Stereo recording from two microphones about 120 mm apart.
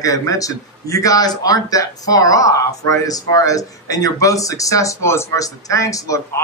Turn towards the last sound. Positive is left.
turn(degrees=25)  # may be behind; listen again after turning